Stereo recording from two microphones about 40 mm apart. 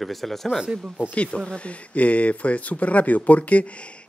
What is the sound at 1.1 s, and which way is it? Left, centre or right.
Speech, left.